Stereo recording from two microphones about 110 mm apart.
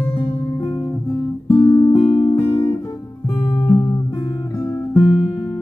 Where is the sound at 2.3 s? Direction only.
20° left (ahead or behind).